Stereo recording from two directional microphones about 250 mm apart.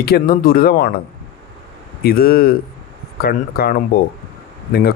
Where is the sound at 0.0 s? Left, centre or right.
Left.